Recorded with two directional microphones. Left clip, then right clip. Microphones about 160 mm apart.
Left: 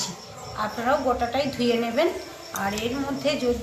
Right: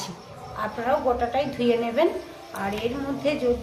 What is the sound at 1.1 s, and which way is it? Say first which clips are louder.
Speech: even; 10° right (ahead or behind).